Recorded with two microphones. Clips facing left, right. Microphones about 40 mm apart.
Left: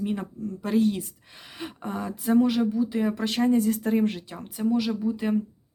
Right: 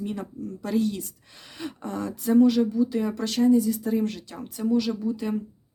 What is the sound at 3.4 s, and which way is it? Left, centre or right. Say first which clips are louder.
Speech: right 2 dB; left.